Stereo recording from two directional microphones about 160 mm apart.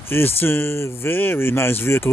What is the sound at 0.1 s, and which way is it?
Speech, 15° left (ahead or behind).